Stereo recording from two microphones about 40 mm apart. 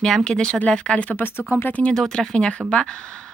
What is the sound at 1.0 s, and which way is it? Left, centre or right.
Speech, left.